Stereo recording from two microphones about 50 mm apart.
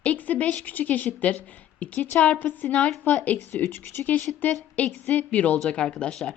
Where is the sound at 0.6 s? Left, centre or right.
Left.